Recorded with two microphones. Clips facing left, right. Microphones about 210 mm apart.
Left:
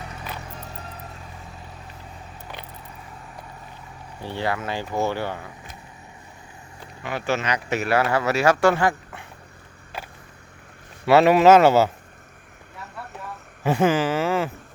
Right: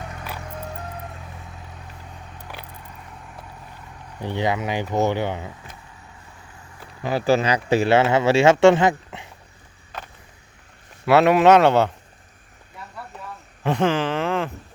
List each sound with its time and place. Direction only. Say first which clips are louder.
4.2 s speech: right 3 dB; 15° right (ahead or behind)
7.0 s speech: right 6 dB; 35° right (ahead or behind)
9.9 s vehicle: left 1 dB; 10° left (ahead or behind)
11.0 s speech: even; centre (ahead or behind)
13.7 s speech: left 1 dB; 5° left (ahead or behind)